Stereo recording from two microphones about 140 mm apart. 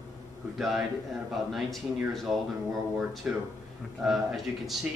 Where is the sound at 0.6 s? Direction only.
Centre (ahead or behind).